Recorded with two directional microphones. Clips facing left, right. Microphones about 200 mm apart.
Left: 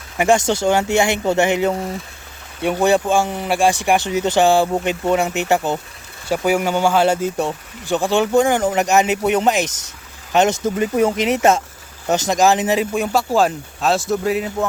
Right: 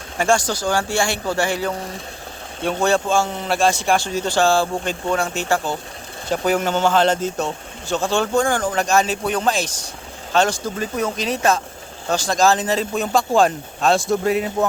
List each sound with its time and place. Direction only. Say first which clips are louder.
0.2 s speech: left 4 dB; 20° left (ahead or behind); by 14.4 s 5° left (ahead or behind)